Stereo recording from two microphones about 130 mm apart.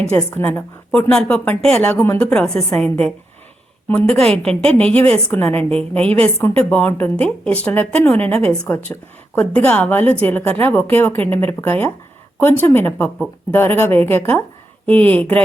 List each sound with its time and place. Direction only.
0.1 s a woman's voice: 15° left (ahead or behind)